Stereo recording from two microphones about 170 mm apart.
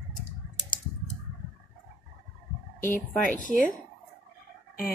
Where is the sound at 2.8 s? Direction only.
50° left (ahead or behind).